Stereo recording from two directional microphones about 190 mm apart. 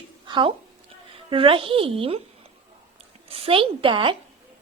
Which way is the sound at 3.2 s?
30° right (ahead or behind).